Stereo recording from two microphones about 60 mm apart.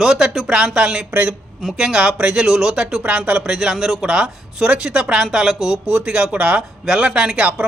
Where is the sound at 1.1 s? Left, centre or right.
Right.